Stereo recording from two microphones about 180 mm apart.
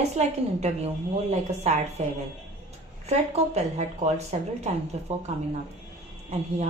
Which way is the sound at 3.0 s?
35° right (ahead or behind).